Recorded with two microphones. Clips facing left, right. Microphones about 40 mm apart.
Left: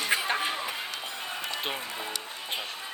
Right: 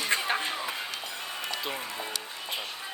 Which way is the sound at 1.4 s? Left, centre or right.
Left.